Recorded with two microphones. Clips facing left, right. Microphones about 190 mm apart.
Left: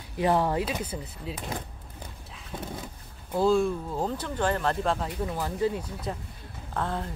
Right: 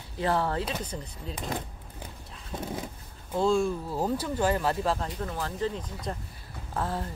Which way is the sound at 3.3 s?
Centre (ahead or behind).